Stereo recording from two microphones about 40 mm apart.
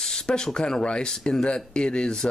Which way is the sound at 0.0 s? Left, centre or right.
Centre.